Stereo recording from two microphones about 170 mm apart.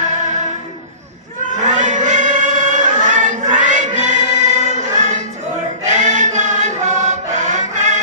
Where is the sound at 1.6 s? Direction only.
45° right (ahead or behind).